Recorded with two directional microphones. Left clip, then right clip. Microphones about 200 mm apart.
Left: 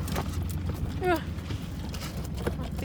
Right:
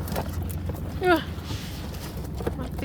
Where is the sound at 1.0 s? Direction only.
30° right (ahead or behind).